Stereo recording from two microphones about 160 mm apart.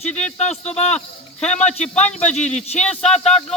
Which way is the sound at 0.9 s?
5° left (ahead or behind).